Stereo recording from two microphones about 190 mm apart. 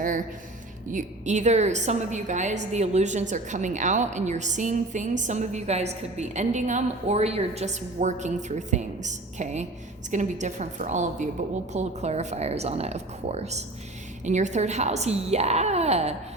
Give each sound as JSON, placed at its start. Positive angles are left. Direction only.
{"t": 0.9, "sound": "a woman's voice", "side_deg": -40}